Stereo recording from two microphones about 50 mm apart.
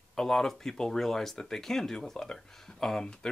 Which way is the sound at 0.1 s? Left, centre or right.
Centre.